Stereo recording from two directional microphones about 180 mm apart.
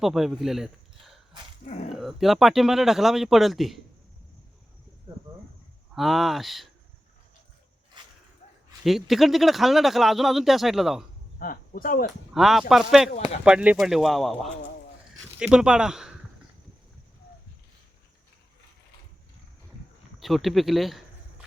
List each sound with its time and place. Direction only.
0.0 s speech: centre (ahead or behind)
5.9 s speech: centre (ahead or behind)
8.8 s speech: centre (ahead or behind)
11.3 s speech: 50° left (ahead or behind)
12.3 s speech: centre (ahead or behind)
13.1 s speech: 35° left (ahead or behind)
13.4 s speech: 5° right (ahead or behind)
20.1 s speech: centre (ahead or behind)